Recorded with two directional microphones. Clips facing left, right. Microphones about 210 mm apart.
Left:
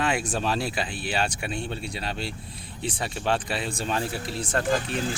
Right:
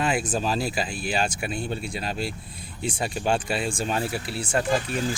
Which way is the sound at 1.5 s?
40° right (ahead or behind).